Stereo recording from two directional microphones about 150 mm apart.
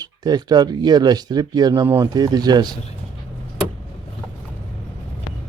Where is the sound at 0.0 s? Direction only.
25° right (ahead or behind).